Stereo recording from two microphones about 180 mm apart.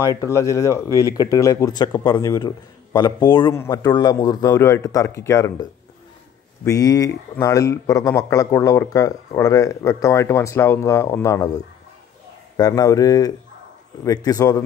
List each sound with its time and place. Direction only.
0.0 s a man's voice: 15° left (ahead or behind)